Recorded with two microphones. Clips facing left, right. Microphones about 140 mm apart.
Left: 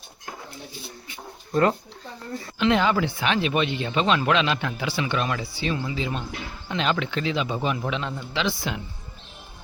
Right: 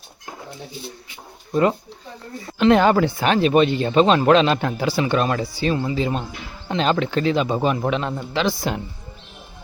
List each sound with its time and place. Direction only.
2.6 s a man's voice: 45° right (ahead or behind)